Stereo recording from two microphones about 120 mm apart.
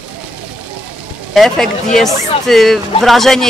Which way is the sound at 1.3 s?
5° left (ahead or behind).